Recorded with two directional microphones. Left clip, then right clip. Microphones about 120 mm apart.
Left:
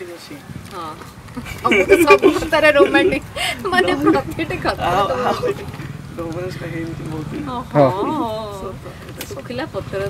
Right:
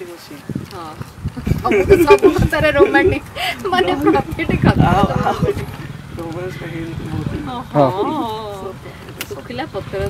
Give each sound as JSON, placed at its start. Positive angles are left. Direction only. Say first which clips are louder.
{"t": 1.5, "sound": "speech", "louder": "right 1 dB", "side_deg": 5}
{"t": 7.5, "sound": "speech", "louder": "even", "side_deg": 10}